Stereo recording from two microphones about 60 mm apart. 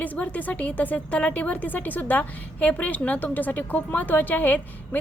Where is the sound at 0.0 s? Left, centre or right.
Left.